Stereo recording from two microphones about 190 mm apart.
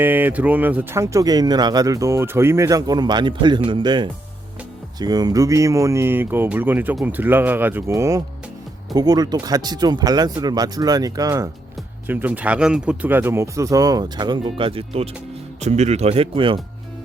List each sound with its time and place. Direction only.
0.0 s speech: 10° right (ahead or behind); by 16.6 s 30° right (ahead or behind)